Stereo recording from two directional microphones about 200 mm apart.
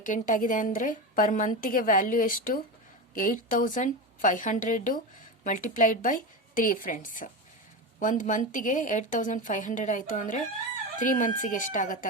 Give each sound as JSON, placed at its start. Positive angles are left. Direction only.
{"t": 0.0, "sound": "a woman's voice", "side_deg": 40}